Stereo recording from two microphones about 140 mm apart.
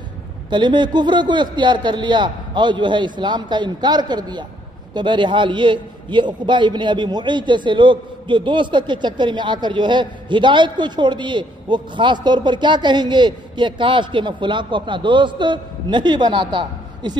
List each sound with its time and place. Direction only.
0.5 s a man's voice: 30° right (ahead or behind)